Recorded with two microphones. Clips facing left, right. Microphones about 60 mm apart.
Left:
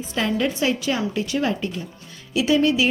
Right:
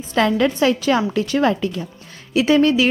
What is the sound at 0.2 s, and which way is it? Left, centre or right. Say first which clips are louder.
A woman's voice: right 6 dB; right.